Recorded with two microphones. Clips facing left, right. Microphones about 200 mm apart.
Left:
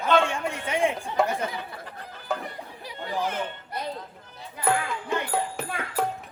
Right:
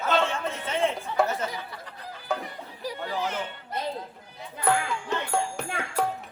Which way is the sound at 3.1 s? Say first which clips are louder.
Left 3 dB; 55° left (ahead or behind).